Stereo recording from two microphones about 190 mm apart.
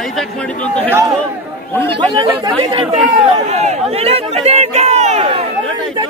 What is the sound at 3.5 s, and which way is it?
Speech, 35° right (ahead or behind).